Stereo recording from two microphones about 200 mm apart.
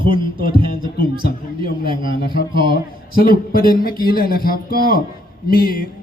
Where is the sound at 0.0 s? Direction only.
25° right (ahead or behind).